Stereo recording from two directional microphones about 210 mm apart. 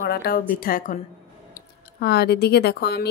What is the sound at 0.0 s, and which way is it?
Speech, 45° left (ahead or behind).